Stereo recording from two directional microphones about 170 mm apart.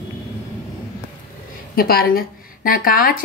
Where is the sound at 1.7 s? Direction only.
60° left (ahead or behind).